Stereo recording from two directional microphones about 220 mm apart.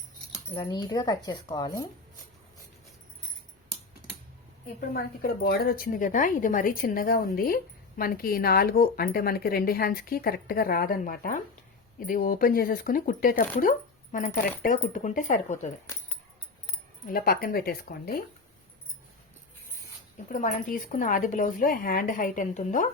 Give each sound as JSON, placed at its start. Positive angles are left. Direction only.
{"t": 0.5, "sound": "speech", "side_deg": 20}
{"t": 4.8, "sound": "speech", "side_deg": 40}
{"t": 17.1, "sound": "speech", "side_deg": 40}
{"t": 20.3, "sound": "speech", "side_deg": 35}